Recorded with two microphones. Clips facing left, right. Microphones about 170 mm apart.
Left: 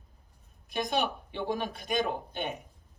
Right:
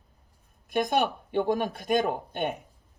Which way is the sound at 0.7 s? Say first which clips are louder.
Right 5 dB; 55° right (ahead or behind).